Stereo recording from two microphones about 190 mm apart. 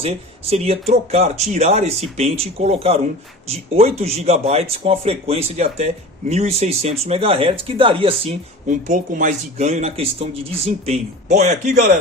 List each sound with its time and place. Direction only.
0.0 s speech: 35° right (ahead or behind)
8.6 s speech: 40° right (ahead or behind)